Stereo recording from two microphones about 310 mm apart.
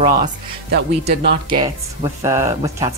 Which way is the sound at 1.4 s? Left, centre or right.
Centre.